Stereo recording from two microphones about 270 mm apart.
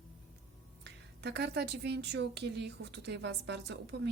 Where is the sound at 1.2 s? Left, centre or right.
Right.